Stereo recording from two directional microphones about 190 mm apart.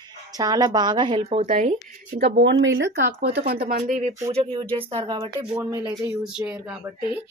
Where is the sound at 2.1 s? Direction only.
65° right (ahead or behind).